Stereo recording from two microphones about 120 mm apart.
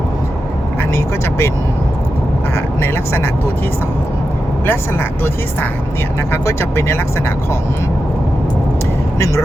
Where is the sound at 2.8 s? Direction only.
20° left (ahead or behind).